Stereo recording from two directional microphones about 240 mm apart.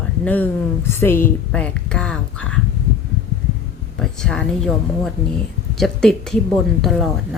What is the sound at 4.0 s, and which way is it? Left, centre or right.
Speech, centre.